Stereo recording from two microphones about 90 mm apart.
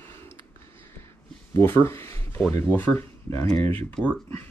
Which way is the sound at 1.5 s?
30° left (ahead or behind).